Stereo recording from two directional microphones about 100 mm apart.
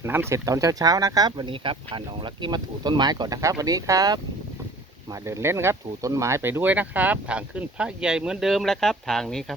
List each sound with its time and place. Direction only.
0.0 s speech: 25° right (ahead or behind)
5.2 s speech: 30° right (ahead or behind); by 9.4 s 5° left (ahead or behind)